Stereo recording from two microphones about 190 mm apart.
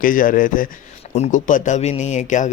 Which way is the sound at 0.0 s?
45° left (ahead or behind).